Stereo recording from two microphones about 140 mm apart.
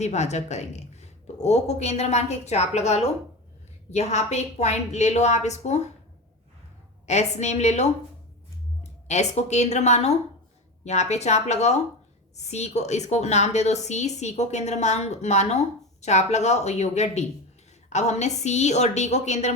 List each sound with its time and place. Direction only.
0.0 s a woman's voice: 55° left (ahead or behind)
7.1 s a woman's voice: 55° left (ahead or behind)